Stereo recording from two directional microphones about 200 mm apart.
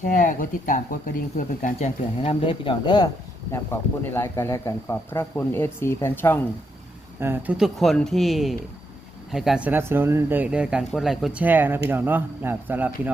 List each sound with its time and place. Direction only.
0.0 s speech: 40° left (ahead or behind)
2.2 s speech: 25° left (ahead or behind)
3.5 s speech: 10° left (ahead or behind)
7.2 s speech: 10° right (ahead or behind)